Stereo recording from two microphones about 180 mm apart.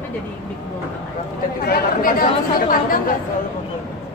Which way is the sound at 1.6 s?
55° left (ahead or behind).